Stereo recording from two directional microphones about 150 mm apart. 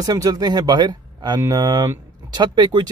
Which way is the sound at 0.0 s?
25° right (ahead or behind).